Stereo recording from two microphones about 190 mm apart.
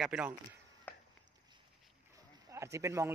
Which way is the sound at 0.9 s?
10° left (ahead or behind).